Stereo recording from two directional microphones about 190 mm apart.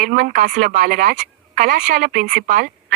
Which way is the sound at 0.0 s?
45° right (ahead or behind).